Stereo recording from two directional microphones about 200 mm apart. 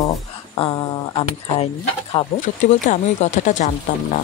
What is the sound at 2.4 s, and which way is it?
Speech, 40° left (ahead or behind).